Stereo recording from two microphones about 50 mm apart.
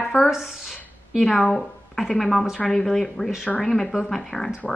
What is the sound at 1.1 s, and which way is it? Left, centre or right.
A woman's voice, centre.